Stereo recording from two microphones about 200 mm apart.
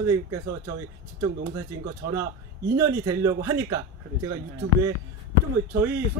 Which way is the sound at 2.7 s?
15° right (ahead or behind).